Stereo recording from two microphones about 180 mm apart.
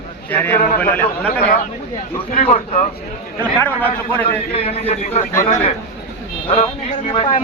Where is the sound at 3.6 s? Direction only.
10° left (ahead or behind).